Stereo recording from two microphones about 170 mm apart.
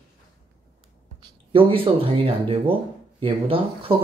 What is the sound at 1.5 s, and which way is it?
Speech, 30° right (ahead or behind).